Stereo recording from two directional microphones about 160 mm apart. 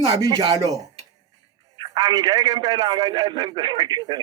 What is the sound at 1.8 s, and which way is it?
A man's voice, 25° right (ahead or behind).